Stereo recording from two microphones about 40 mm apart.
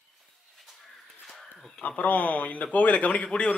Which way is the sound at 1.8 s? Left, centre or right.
Left.